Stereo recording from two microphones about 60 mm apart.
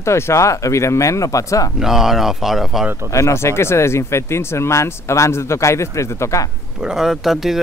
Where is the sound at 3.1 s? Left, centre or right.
Left.